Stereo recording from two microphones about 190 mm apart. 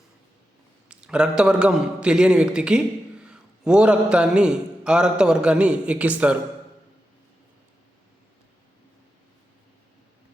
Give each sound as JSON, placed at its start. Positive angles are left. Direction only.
{"t": 0.9, "sound": "a man's voice", "side_deg": -5}